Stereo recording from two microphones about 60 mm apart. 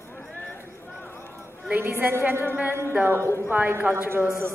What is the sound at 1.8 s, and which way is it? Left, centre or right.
A woman's voice, right.